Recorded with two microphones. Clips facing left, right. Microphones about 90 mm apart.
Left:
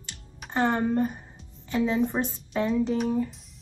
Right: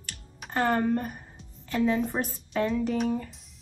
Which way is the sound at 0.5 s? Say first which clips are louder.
Left 1 dB; 20° left (ahead or behind).